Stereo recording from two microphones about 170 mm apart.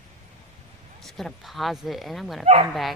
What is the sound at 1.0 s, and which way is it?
Speech, centre (ahead or behind).